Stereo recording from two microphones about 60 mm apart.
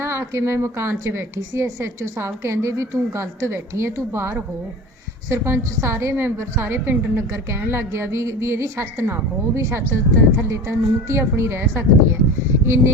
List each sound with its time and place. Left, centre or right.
0.0 s a woman's voice: right